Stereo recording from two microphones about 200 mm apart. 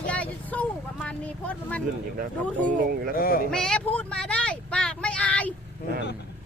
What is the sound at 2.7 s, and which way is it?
Speech, 40° right (ahead or behind).